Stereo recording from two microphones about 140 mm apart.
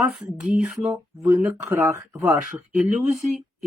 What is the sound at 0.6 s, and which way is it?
Speech, 10° right (ahead or behind).